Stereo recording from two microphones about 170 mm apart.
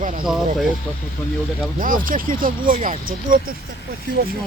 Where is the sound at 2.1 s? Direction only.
55° right (ahead or behind).